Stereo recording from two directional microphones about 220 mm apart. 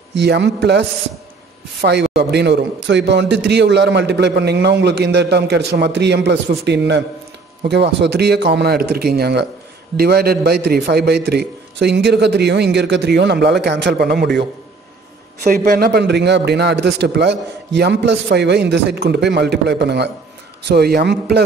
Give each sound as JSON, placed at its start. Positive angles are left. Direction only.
{"t": 0.1, "sound": "a man's voice", "side_deg": -50}
{"t": 15.4, "sound": "a man's voice", "side_deg": -40}